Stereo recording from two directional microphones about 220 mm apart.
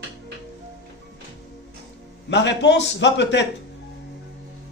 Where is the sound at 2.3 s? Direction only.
55° left (ahead or behind).